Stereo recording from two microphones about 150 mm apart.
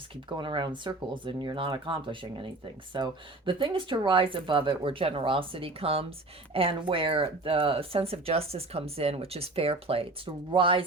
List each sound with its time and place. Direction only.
0.3 s speech: 30° right (ahead or behind)